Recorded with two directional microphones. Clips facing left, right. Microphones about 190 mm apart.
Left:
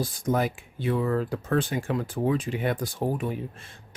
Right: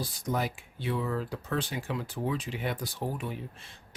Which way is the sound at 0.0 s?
50° left (ahead or behind).